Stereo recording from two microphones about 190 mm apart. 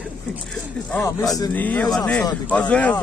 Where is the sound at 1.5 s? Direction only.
10° left (ahead or behind).